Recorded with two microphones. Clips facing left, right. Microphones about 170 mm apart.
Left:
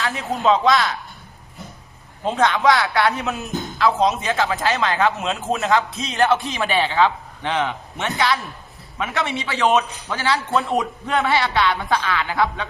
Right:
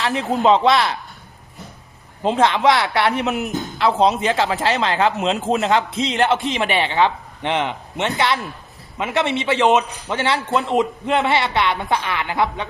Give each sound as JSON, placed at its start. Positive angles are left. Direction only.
{"t": 0.2, "sound": "speech", "side_deg": -30}
{"t": 2.2, "sound": "speech", "side_deg": -25}